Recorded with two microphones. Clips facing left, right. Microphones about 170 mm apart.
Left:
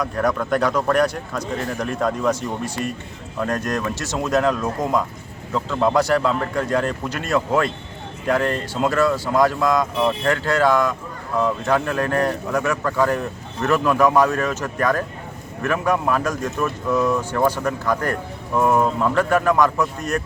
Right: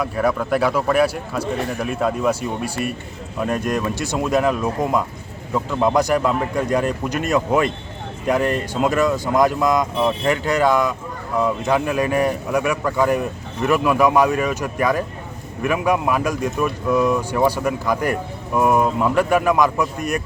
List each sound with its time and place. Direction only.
0.0 s speech: 5° right (ahead or behind)